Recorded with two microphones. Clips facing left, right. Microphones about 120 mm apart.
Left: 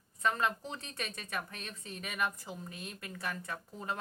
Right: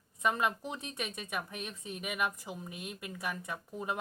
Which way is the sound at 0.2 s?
15° right (ahead or behind).